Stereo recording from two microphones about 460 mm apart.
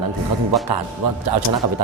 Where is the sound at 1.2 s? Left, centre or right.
Right.